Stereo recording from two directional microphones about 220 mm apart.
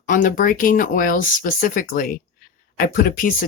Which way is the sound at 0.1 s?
40° left (ahead or behind).